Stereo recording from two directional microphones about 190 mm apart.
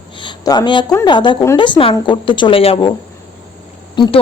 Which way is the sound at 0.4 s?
20° left (ahead or behind).